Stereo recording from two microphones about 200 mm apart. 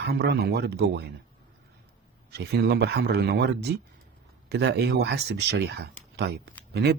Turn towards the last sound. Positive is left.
turn(degrees=-55)  # may be behind; listen again after turning